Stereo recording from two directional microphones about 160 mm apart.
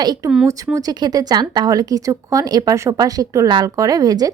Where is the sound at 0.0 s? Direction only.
25° right (ahead or behind).